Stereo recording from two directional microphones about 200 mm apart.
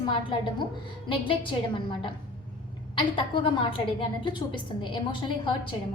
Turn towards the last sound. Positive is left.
turn(degrees=25)  # may be behind; listen again after turning